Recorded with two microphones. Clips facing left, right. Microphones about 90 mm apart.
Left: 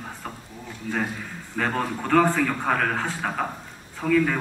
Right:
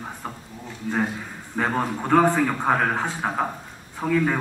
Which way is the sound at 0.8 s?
20° right (ahead or behind).